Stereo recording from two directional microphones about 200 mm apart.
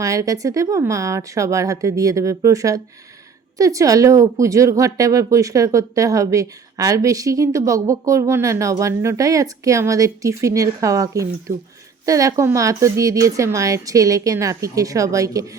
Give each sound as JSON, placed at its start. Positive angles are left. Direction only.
{"t": 0.0, "sound": "speech", "side_deg": -15}